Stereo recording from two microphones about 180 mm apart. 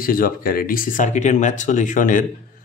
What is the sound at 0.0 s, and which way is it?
Speech, 50° left (ahead or behind).